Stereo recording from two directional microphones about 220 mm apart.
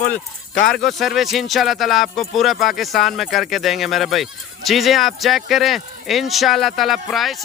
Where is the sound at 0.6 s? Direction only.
Centre (ahead or behind).